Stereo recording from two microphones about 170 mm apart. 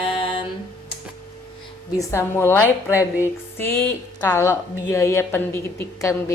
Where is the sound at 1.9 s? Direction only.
15° left (ahead or behind).